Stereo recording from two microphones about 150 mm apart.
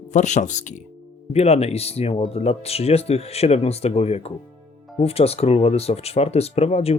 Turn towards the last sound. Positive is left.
turn(degrees=45)  # may be behind; listen again after turning